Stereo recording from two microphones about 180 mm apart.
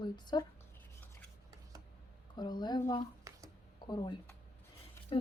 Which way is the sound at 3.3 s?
15° right (ahead or behind).